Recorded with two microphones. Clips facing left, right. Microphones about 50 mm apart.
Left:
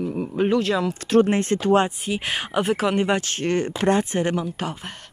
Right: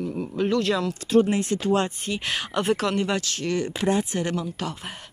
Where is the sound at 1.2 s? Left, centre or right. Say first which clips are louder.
Left 3 dB; left.